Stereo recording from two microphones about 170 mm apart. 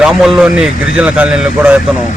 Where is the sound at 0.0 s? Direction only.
5° right (ahead or behind).